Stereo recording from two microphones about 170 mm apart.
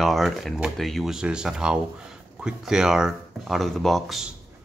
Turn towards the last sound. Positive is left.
turn(degrees=0)  # may be behind; listen again after turning